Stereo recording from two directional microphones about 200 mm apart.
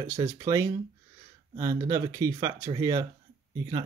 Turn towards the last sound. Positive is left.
turn(degrees=-20)  # may be behind; listen again after turning